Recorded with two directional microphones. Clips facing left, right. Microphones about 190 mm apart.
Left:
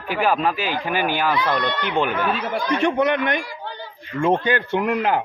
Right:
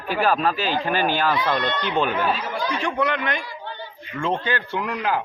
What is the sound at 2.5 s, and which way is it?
Speech, 60° left (ahead or behind).